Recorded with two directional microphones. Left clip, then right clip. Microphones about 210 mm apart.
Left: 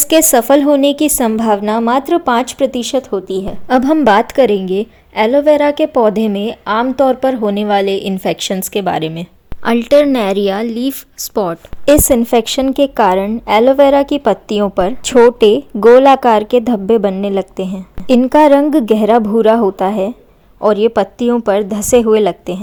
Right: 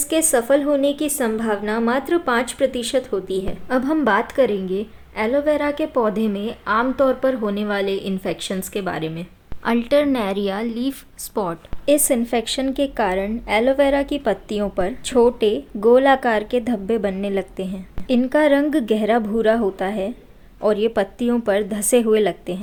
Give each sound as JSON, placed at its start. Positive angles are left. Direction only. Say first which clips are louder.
{"t": 0.0, "sound": "a woman's voice", "louder": "left 9 dB", "side_deg": 40}
{"t": 3.7, "sound": "a woman's voice", "louder": "left 9 dB", "side_deg": 35}